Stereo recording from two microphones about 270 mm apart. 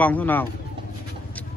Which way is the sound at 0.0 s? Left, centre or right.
Centre.